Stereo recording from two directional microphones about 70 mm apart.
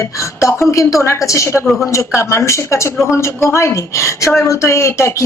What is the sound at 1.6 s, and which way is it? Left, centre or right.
Speech, centre.